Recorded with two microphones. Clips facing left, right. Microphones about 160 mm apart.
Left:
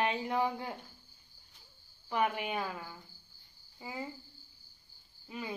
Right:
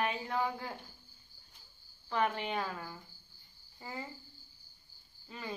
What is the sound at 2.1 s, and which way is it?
Speech, 10° left (ahead or behind).